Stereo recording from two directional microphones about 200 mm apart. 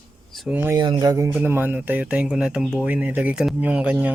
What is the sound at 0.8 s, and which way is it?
Speech, 20° right (ahead or behind).